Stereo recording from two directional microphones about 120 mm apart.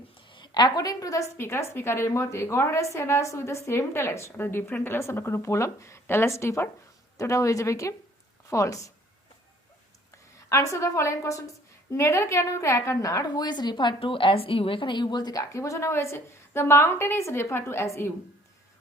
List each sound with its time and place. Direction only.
0.3 s a woman's voice: 40° left (ahead or behind)
10.5 s a woman's voice: 25° left (ahead or behind)